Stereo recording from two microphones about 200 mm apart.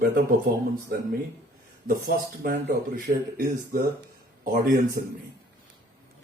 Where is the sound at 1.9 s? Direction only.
45° right (ahead or behind).